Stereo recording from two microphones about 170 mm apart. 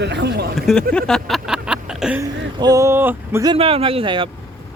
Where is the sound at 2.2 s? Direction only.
20° right (ahead or behind).